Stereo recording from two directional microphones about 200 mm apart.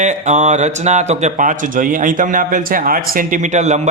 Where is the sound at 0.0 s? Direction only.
35° right (ahead or behind).